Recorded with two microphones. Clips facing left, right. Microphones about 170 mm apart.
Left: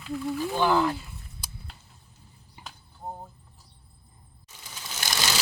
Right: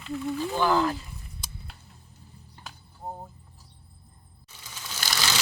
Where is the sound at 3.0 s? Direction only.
Centre (ahead or behind).